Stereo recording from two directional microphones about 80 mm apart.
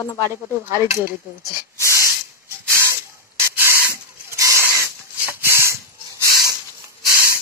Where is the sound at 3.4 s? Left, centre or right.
Right.